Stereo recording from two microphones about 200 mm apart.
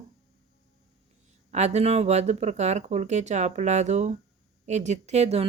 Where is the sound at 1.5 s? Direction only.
35° right (ahead or behind).